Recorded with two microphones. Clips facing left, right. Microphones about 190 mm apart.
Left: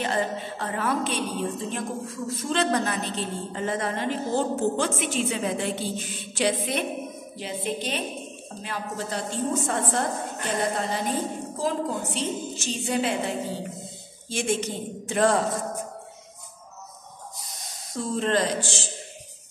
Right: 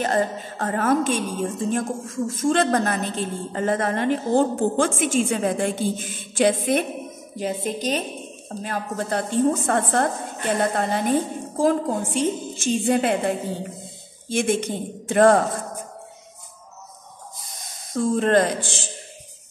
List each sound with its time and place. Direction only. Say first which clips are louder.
0.0 s a woman's voice: right 4 dB; 45° right (ahead or behind)
14.3 s a woman's voice: right 5 dB; 55° right (ahead or behind)
17.9 s a woman's voice: right 6 dB; 50° right (ahead or behind)